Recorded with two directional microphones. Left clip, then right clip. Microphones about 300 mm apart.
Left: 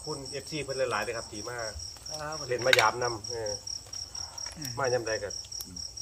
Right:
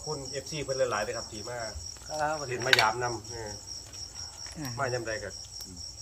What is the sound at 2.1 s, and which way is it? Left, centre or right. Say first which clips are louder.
Speech: right 8 dB; centre.